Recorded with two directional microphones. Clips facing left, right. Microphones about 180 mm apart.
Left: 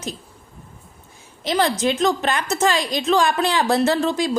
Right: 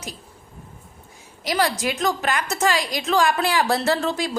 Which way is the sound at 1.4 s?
25° left (ahead or behind).